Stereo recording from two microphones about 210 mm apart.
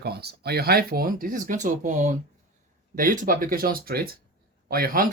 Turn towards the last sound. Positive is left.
turn(degrees=-45)  # may be behind; listen again after turning